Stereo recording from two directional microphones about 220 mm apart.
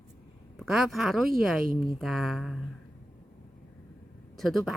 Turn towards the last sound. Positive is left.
turn(degrees=0)  # may be behind; listen again after turning